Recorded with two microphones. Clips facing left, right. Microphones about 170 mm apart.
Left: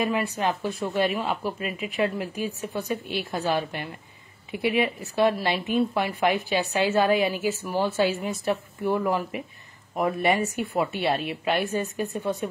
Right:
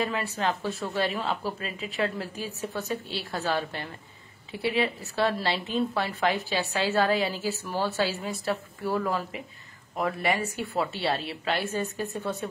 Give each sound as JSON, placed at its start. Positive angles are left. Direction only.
{"t": 0.0, "sound": "speech", "side_deg": 15}